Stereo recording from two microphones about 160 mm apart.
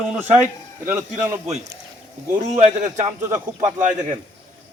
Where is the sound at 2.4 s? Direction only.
45° right (ahead or behind).